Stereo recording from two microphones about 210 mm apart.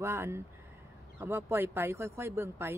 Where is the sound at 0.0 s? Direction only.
10° right (ahead or behind).